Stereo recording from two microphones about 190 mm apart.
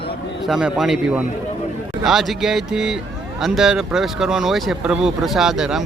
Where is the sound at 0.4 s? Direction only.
Centre (ahead or behind).